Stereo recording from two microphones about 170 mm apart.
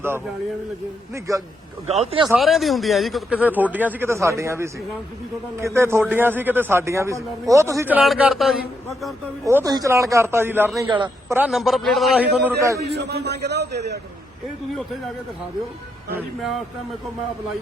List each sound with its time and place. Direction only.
1.9 s speech: 35° right (ahead or behind)
2.2 s a man's voice: centre (ahead or behind)
9.4 s a man's voice: 15° right (ahead or behind)
10.8 s a man's voice: 30° right (ahead or behind)
11.3 s a man's voice: 10° right (ahead or behind)
12.5 s a man's voice: 20° right (ahead or behind)
12.8 s a man's voice: 80° right